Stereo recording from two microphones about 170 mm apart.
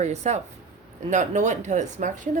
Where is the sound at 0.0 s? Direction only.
40° right (ahead or behind).